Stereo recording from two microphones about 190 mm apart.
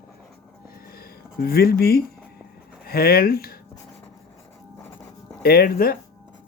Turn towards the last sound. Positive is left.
turn(degrees=50)  # may be behind; listen again after turning